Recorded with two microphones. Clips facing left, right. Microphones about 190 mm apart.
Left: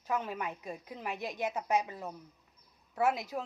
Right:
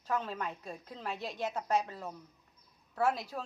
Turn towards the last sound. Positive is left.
turn(degrees=20)  # may be behind; listen again after turning